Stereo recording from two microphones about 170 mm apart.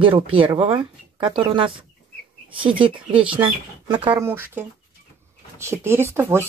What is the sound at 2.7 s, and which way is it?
Speech, 30° right (ahead or behind).